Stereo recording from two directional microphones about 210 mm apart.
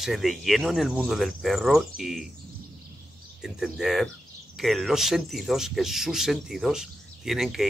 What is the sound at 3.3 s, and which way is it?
Speech, centre (ahead or behind).